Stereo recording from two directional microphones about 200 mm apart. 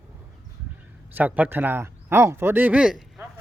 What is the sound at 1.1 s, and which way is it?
A man's voice, 10° right (ahead or behind).